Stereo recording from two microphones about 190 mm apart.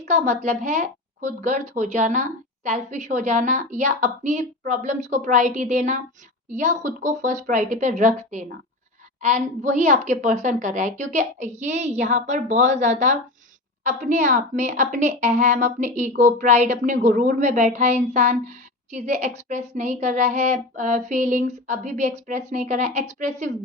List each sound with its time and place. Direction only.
0.4 s speech: 40° right (ahead or behind)